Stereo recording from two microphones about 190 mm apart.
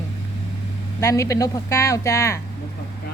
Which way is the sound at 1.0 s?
15° left (ahead or behind).